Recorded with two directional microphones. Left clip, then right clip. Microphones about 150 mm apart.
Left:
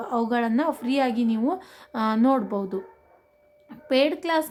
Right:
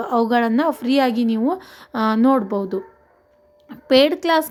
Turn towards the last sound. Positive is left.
turn(degrees=-30)  # may be behind; listen again after turning